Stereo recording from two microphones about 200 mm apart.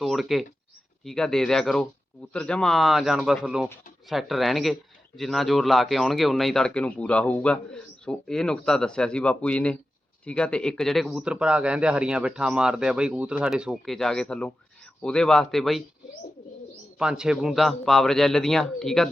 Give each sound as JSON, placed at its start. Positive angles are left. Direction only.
{"t": 0.0, "sound": "a man's voice", "side_deg": 0}
{"t": 17.0, "sound": "a man's voice", "side_deg": -5}